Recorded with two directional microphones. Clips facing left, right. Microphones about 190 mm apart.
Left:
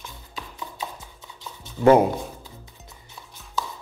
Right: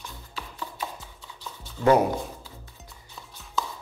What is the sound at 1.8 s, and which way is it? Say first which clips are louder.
Speech: left 4 dB; 25° left (ahead or behind).